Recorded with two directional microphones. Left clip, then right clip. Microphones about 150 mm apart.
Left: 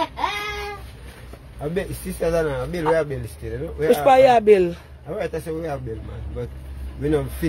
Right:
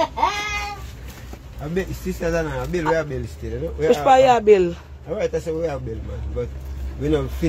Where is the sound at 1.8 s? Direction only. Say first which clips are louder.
Right 1 dB; 65° left (ahead or behind).